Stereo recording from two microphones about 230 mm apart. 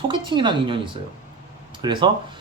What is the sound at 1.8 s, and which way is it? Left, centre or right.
Speech, right.